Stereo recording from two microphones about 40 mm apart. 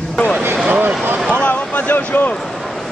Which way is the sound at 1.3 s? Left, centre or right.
Left.